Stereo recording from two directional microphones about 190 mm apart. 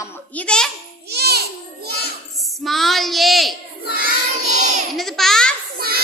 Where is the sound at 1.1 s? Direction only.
55° right (ahead or behind).